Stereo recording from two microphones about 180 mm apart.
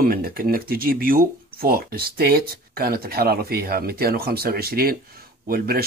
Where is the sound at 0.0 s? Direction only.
55° right (ahead or behind).